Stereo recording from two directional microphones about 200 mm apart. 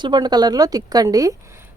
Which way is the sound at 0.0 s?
20° right (ahead or behind).